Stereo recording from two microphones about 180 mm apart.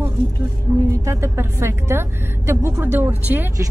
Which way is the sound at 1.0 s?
15° right (ahead or behind).